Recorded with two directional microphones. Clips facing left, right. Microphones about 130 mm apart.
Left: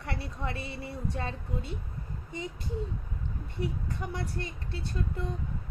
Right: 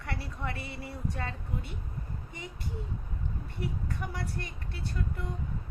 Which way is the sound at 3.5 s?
25° left (ahead or behind).